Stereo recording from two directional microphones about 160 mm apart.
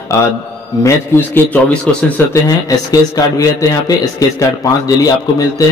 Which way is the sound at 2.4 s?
20° left (ahead or behind).